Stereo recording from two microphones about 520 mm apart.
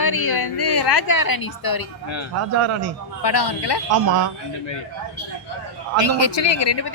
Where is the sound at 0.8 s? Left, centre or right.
Left.